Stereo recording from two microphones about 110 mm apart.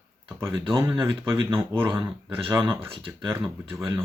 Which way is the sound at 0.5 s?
45° right (ahead or behind).